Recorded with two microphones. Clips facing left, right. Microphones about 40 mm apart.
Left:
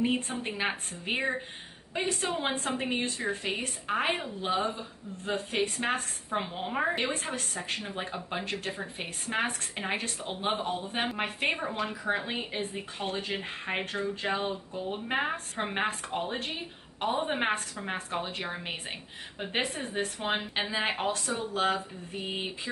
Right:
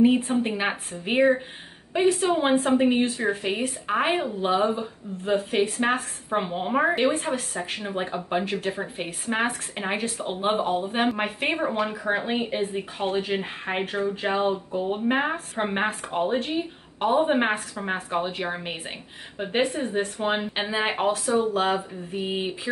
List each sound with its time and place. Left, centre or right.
0.4 s speech: centre
15.0 s speech: centre